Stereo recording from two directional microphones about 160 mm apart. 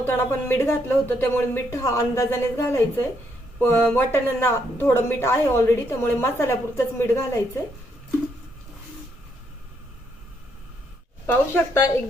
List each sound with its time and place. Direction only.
0.0 s speech: 15° left (ahead or behind)
11.3 s speech: 15° left (ahead or behind)